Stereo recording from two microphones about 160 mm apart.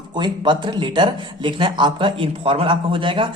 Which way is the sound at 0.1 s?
30° right (ahead or behind).